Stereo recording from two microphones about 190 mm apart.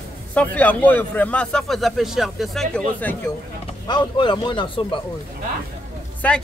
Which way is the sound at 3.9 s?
25° left (ahead or behind).